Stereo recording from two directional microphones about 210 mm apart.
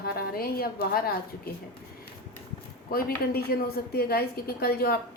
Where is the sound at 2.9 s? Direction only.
45° left (ahead or behind).